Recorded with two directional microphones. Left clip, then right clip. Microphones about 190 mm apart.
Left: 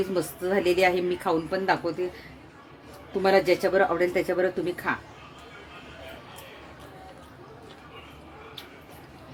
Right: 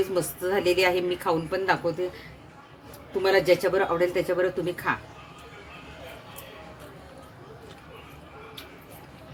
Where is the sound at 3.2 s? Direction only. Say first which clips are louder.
Even; 15° left (ahead or behind).